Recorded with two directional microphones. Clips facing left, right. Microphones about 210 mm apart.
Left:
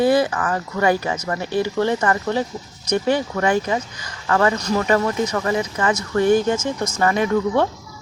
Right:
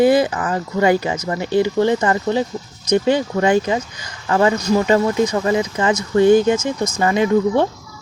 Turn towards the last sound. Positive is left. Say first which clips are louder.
# right 3 dB
turn(degrees=-20)  # may be behind; listen again after turning